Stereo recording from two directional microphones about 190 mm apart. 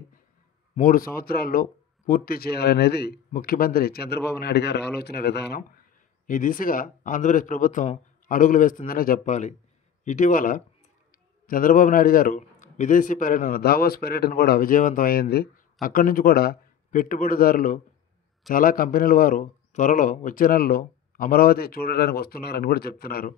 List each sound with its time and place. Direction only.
0.7 s speech: 45° left (ahead or behind)
6.2 s a man's voice: 45° left (ahead or behind)